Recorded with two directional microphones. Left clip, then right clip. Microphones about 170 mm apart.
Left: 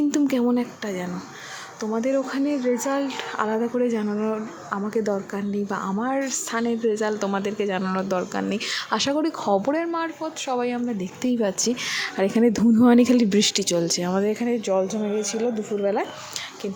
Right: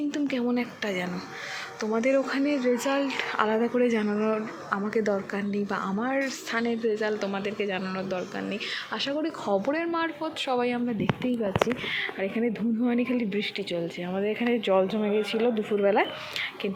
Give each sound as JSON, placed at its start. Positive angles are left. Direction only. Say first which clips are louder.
{"t": 0.1, "sound": "speech", "louder": "left 6 dB", "side_deg": 35}
{"t": 7.0, "sound": "speech", "louder": "left 4 dB", "side_deg": 35}
{"t": 9.8, "sound": "speech", "louder": "left 2 dB", "side_deg": 5}
{"t": 11.2, "sound": "speech", "louder": "left 4 dB", "side_deg": 25}
{"t": 11.9, "sound": "speech", "louder": "left 6 dB", "side_deg": 40}
{"t": 14.3, "sound": "speech", "louder": "left 1 dB", "side_deg": 10}